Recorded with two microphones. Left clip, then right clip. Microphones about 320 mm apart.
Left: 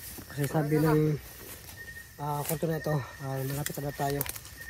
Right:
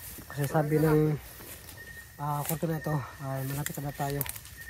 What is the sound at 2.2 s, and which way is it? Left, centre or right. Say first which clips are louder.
Speech: even; centre.